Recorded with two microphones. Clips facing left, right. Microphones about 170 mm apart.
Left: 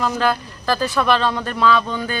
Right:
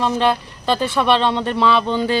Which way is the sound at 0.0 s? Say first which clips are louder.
Right 2 dB; 25° right (ahead or behind).